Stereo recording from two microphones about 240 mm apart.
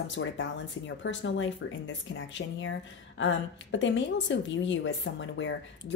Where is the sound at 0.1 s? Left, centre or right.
Left.